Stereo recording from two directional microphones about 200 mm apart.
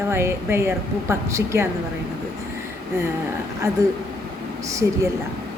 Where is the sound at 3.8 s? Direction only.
15° right (ahead or behind).